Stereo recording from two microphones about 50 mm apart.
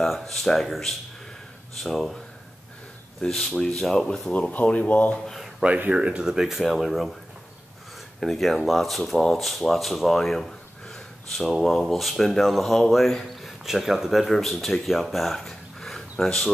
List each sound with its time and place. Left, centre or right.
0.3 s speech: centre
3.2 s speech: centre
4.3 s speech: left
5.1 s speech: centre
5.9 s speech: right
6.2 s speech: centre
8.2 s speech: centre